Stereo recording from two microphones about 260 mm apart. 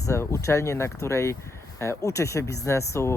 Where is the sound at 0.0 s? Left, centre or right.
Centre.